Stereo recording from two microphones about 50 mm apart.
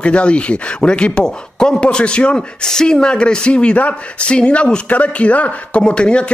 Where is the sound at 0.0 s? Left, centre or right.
Left.